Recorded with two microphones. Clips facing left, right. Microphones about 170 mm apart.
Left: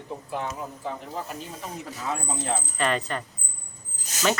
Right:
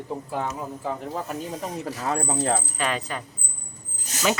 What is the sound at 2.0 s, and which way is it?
Speech, 45° right (ahead or behind).